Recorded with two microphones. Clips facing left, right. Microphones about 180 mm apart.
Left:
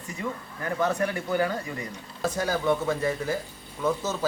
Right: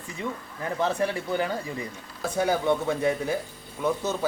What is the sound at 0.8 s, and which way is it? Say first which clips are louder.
Speech: even; 30° right (ahead or behind).